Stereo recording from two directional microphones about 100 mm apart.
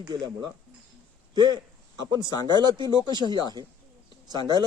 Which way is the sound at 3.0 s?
45° right (ahead or behind).